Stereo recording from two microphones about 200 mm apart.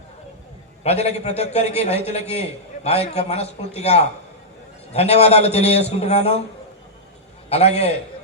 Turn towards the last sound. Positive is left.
turn(degrees=30)  # may be behind; listen again after turning